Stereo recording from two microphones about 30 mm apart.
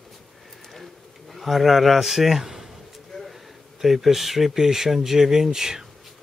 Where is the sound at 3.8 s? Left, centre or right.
Centre.